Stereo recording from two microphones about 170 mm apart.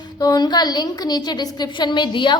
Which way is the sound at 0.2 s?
20° left (ahead or behind).